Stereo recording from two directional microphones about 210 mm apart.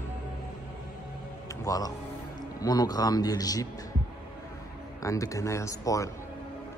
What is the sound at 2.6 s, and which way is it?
A man's voice, 20° left (ahead or behind).